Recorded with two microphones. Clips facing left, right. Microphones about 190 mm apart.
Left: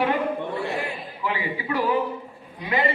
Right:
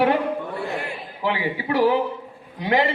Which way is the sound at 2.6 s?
90° right.